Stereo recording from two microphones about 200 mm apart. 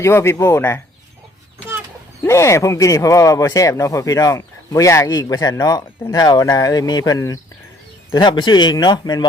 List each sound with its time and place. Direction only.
0.0 s speech: 10° left (ahead or behind)
2.2 s speech: 15° left (ahead or behind)